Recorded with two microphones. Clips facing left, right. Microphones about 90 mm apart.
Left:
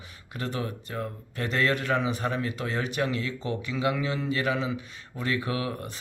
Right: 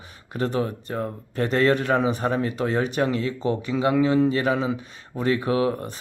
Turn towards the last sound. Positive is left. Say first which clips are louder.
# right 8 dB
turn(degrees=-35)  # may be behind; listen again after turning